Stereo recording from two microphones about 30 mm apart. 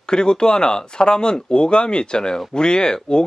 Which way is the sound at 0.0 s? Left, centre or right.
Left.